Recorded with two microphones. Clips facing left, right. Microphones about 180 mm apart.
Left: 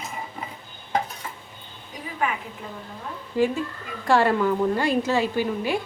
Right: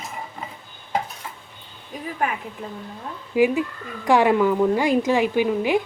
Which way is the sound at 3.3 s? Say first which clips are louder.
Right 4 dB; 15° right (ahead or behind).